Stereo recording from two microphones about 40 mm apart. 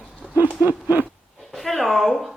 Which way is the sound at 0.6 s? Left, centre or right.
Right.